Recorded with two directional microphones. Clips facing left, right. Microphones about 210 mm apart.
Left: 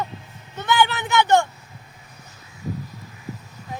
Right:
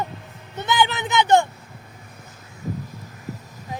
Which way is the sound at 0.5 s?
15° right (ahead or behind).